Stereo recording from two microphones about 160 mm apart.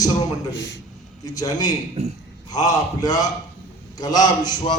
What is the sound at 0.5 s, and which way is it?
Speech, 90° left.